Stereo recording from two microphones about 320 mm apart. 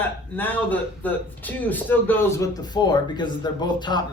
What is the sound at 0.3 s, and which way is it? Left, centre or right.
Speech, centre.